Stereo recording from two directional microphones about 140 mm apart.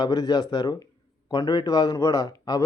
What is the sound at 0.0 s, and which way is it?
A man's voice, 30° left (ahead or behind).